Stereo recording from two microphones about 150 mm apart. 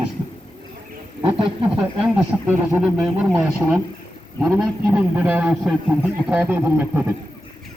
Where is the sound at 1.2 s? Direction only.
35° right (ahead or behind).